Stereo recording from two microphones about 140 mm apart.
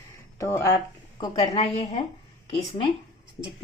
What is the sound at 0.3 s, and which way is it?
Speech, 20° left (ahead or behind).